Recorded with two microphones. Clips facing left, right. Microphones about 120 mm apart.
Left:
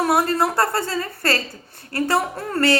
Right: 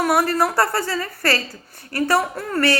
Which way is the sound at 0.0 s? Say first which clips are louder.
Even; 25° left (ahead or behind).